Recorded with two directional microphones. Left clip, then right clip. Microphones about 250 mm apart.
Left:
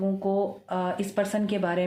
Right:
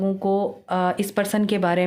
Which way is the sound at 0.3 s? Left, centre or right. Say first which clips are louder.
Right 5 dB; right.